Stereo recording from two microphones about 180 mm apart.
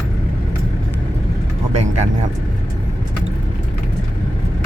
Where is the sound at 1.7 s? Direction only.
40° right (ahead or behind).